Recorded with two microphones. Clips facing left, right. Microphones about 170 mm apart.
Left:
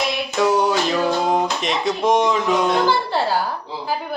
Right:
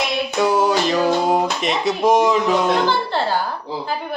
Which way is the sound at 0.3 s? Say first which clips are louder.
Even; centre (ahead or behind).